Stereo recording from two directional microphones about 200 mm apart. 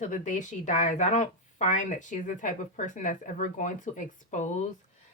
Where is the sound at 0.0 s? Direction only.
40° left (ahead or behind).